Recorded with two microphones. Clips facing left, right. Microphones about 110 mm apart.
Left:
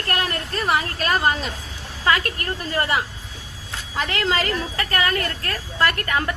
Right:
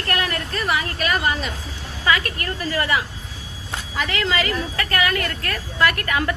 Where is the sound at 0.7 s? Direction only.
40° left (ahead or behind).